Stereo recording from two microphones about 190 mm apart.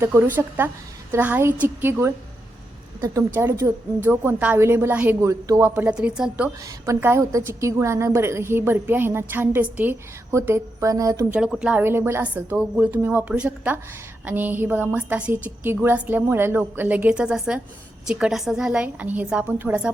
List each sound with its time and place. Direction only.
0.0 s a woman's voice: 10° right (ahead or behind)
6.6 s a woman's voice: 15° right (ahead or behind)
11.3 s a woman's voice: 5° right (ahead or behind)